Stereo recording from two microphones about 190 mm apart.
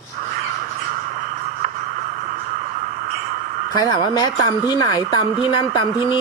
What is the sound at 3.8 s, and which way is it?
Speech, 20° left (ahead or behind).